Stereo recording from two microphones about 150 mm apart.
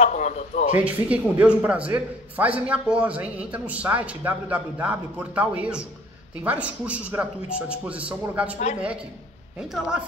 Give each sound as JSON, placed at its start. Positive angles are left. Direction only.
{"t": 0.0, "sound": "speech", "side_deg": 55}
{"t": 0.8, "sound": "a man's voice", "side_deg": -10}
{"t": 9.6, "sound": "speech", "side_deg": -5}